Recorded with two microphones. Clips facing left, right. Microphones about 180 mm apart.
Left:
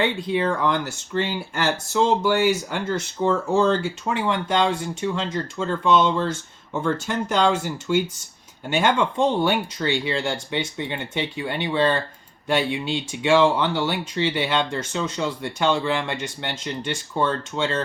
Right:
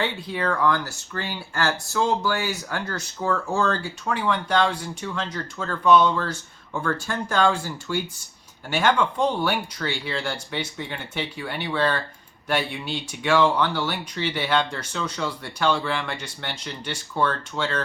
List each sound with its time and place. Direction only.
0.0 s speech: 20° left (ahead or behind)